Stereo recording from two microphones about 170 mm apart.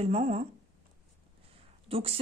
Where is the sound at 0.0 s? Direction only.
40° right (ahead or behind).